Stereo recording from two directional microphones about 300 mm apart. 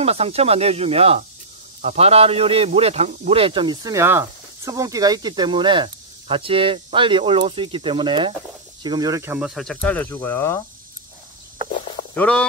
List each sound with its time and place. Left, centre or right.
0.0 s a man's voice: centre
12.2 s speech: centre